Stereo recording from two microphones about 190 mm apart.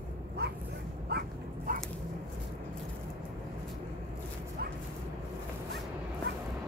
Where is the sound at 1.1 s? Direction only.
55° right (ahead or behind).